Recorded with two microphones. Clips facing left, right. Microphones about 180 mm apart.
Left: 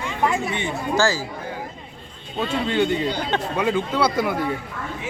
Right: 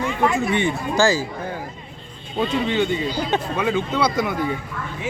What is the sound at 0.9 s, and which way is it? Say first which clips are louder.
Speech: right 2 dB; 15° right (ahead or behind).